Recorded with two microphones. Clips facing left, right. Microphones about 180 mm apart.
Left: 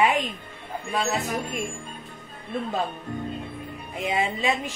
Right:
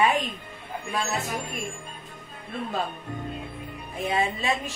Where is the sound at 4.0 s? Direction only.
15° left (ahead or behind).